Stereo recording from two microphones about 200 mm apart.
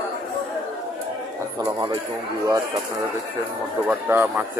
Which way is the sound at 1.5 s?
20° right (ahead or behind).